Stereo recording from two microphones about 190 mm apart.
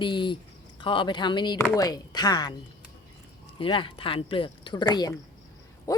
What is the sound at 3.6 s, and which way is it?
Speech, 25° left (ahead or behind).